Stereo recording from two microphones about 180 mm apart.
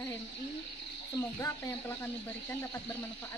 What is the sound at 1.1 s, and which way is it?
Speech, 15° left (ahead or behind).